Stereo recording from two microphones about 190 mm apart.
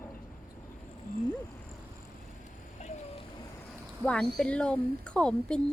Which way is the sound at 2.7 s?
35° left (ahead or behind).